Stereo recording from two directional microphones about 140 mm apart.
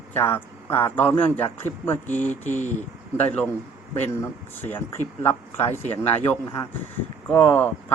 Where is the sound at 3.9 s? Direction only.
15° left (ahead or behind).